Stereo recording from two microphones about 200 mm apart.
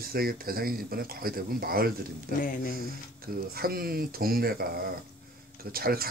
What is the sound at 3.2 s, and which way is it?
Speech, 50° right (ahead or behind).